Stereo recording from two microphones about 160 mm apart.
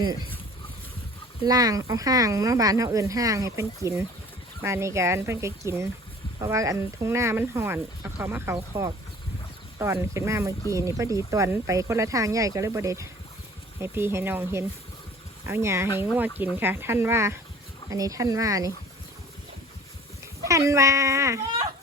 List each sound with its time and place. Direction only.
1.5 s speech: 25° right (ahead or behind)
20.4 s speech: 20° right (ahead or behind)